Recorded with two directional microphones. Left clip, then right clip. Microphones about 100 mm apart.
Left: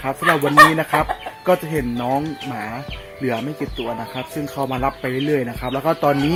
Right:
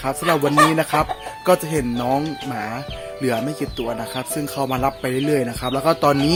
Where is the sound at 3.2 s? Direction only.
15° right (ahead or behind).